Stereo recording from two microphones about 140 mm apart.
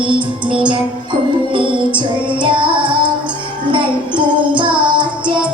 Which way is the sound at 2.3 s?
35° right (ahead or behind).